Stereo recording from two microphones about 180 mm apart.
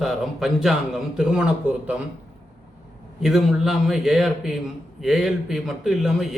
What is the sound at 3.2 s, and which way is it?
Speech, centre (ahead or behind).